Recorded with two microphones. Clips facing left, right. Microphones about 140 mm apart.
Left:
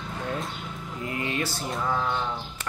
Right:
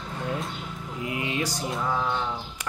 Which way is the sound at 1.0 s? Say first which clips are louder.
Right 1 dB; 15° right (ahead or behind).